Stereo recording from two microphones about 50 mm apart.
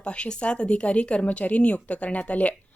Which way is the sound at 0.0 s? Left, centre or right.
Left.